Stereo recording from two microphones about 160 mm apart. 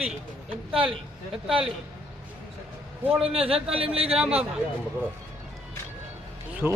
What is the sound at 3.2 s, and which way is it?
Speech, 35° right (ahead or behind).